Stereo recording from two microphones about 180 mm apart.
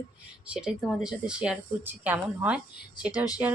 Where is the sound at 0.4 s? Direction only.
5° right (ahead or behind).